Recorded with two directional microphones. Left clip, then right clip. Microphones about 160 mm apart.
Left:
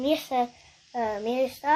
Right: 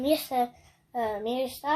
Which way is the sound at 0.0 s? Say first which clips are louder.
Left 1 dB; 10° left (ahead or behind).